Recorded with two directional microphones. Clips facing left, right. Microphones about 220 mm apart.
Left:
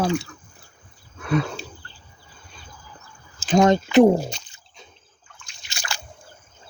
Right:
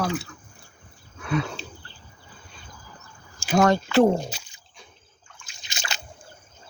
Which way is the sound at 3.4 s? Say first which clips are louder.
Left 3 dB; 10° right (ahead or behind).